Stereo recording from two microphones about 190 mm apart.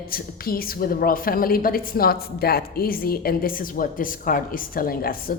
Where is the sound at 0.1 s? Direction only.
50° left (ahead or behind).